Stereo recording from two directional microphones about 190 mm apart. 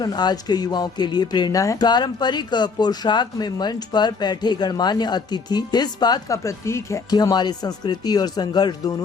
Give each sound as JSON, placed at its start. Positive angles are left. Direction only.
{"t": 0.0, "sound": "speech", "side_deg": 20}